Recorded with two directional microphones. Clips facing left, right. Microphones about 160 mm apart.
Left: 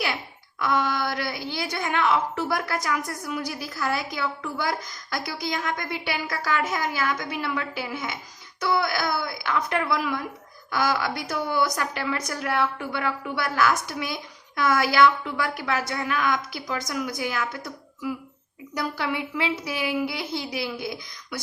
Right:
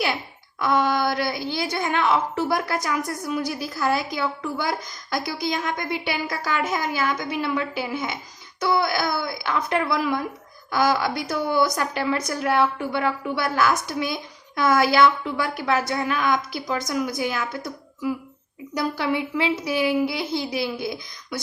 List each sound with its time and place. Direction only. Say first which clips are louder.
0.6 s a woman's voice: right 4 dB; 25° right (ahead or behind)